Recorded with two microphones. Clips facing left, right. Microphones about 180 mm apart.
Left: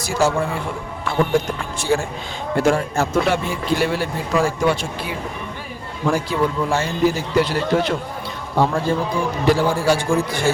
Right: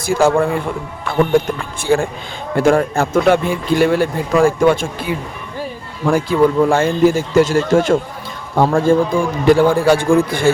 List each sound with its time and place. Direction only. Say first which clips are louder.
0.0 s a man's voice: right 6 dB; 55° right (ahead or behind)
1.8 s a man's voice: right 5 dB; 55° right (ahead or behind)
6.1 s a man's voice: right 11 dB; 55° right (ahead or behind)